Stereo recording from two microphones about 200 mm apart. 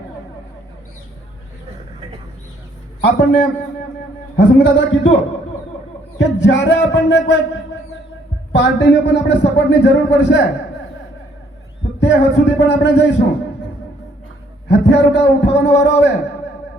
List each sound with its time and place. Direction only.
3.0 s speech: 60° left (ahead or behind)
6.1 s speech: 60° left (ahead or behind)
8.5 s speech: 60° left (ahead or behind)
11.9 s speech: 60° left (ahead or behind)
14.7 s speech: 60° left (ahead or behind)